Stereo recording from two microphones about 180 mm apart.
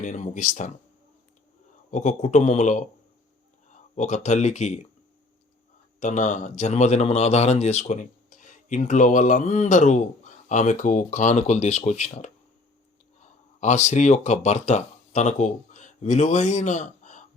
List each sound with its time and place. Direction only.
0.0 s a man's voice: 45° left (ahead or behind)
1.9 s a man's voice: 40° left (ahead or behind)
6.0 s a man's voice: 45° left (ahead or behind)
13.6 s speech: 40° left (ahead or behind)